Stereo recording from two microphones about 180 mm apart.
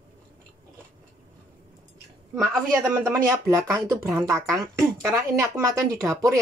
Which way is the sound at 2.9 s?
15° right (ahead or behind).